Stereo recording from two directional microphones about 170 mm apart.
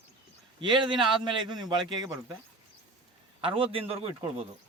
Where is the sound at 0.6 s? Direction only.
25° right (ahead or behind).